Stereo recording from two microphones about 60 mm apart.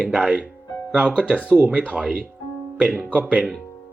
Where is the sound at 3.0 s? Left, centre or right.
Right.